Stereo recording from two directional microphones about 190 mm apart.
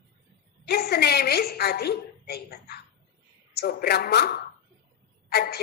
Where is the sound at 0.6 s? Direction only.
55° left (ahead or behind).